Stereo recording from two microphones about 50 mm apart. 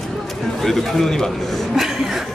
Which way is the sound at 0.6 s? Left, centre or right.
Centre.